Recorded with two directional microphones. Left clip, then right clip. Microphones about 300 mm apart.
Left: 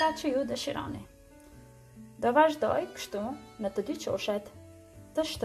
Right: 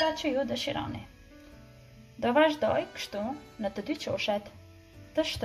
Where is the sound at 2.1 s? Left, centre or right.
Centre.